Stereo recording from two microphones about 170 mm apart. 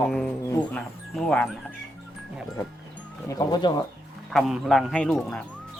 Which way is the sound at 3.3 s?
25° left (ahead or behind).